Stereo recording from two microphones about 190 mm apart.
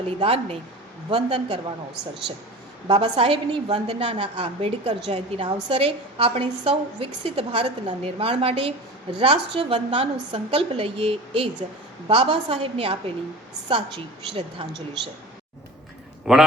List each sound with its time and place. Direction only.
0.2 s a woman's voice: 30° right (ahead or behind)
2.8 s a woman's voice: 25° right (ahead or behind)
16.3 s a man's voice: centre (ahead or behind)